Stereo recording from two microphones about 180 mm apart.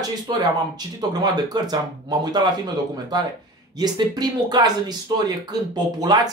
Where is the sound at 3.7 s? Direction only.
20° right (ahead or behind).